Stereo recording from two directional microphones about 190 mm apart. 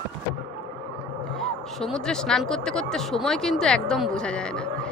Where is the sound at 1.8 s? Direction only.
5° left (ahead or behind).